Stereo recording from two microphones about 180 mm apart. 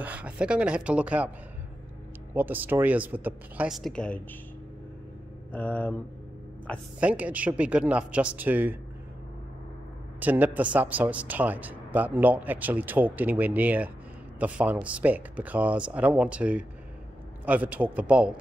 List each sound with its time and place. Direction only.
0.0 s a man's voice: 10° right (ahead or behind)
2.3 s a man's voice: 10° right (ahead or behind); by 4.2 s 5° left (ahead or behind)
5.5 s speech: 10° left (ahead or behind)
7.0 s a man's voice: 5° right (ahead or behind)
10.2 s a man's voice: 10° right (ahead or behind)